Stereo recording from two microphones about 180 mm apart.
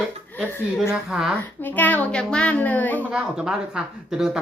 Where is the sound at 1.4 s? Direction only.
10° left (ahead or behind).